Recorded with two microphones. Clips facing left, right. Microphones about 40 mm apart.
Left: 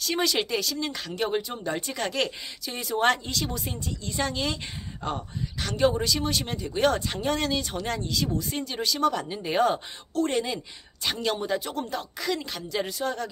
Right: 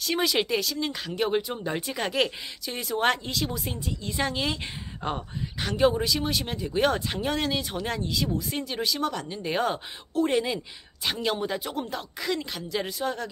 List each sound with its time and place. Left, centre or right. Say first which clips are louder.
0.0 s speech: right 1 dB; centre